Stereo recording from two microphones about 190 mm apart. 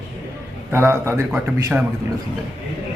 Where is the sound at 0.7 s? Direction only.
15° right (ahead or behind).